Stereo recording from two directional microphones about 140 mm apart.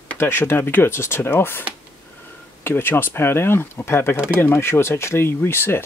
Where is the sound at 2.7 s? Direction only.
15° left (ahead or behind).